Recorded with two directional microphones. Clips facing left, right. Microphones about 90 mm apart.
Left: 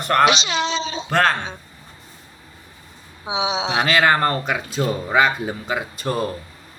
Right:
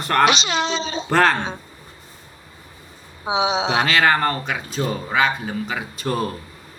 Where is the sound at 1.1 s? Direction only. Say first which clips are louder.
Right 2 dB; centre (ahead or behind).